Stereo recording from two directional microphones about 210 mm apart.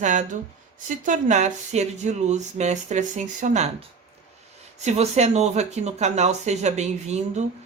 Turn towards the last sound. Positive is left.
turn(degrees=-30)  # may be behind; listen again after turning